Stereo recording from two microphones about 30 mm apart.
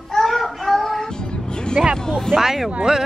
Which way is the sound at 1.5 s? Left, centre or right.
Left.